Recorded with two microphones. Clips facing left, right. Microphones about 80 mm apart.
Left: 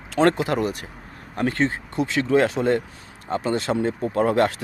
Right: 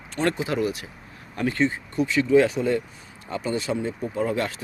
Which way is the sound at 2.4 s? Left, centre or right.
Left.